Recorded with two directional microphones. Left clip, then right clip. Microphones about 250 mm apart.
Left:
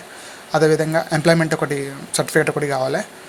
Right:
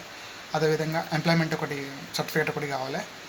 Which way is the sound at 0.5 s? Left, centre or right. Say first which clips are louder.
Left 10 dB; left.